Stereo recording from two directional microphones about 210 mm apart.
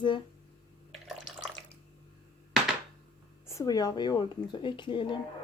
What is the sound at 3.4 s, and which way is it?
Speech, 15° left (ahead or behind).